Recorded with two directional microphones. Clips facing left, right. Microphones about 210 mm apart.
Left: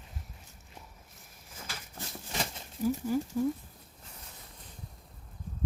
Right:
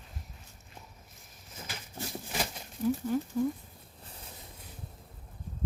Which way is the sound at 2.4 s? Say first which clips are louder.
Left 1 dB; 5° left (ahead or behind).